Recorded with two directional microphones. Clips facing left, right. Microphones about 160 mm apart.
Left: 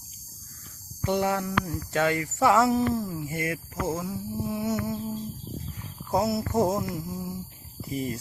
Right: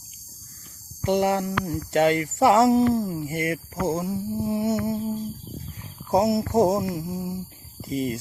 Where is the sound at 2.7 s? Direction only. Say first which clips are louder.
Right 5 dB; 20° right (ahead or behind).